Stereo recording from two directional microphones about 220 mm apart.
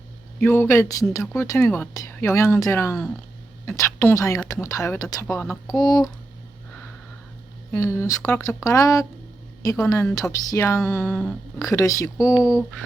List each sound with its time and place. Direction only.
0.3 s speech: 10° left (ahead or behind)
7.7 s speech: 15° left (ahead or behind)
12.5 s mantra: 5° right (ahead or behind)